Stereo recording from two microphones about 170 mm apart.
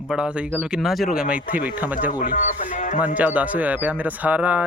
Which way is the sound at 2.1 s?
55° left (ahead or behind).